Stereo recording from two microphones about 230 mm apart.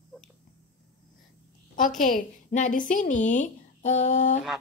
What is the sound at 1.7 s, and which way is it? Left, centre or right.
A woman's voice, left.